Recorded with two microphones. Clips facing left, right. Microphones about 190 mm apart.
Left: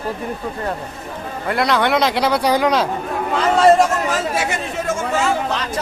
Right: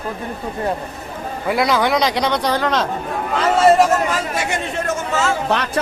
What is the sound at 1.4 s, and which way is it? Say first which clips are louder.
A man's voice: right 1 dB; centre (ahead or behind).